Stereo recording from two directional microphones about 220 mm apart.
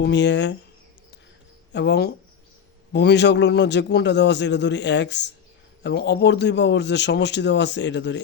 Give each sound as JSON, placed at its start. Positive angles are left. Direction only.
{"t": 0.0, "sound": "a man's voice", "side_deg": 55}
{"t": 1.7, "sound": "a man's voice", "side_deg": 50}